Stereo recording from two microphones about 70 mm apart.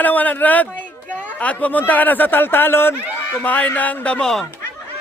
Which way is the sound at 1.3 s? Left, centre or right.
Left.